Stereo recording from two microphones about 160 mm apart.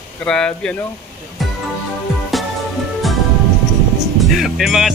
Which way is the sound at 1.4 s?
Centre (ahead or behind).